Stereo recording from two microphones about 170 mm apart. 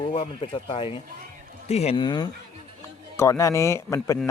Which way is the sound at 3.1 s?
15° left (ahead or behind).